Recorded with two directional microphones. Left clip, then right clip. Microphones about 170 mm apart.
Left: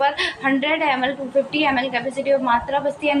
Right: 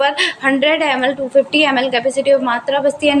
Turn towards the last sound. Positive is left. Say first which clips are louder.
# right 6 dB
turn(degrees=-45)  # may be behind; listen again after turning